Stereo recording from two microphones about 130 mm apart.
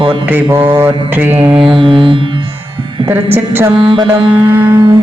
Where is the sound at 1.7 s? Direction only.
40° right (ahead or behind).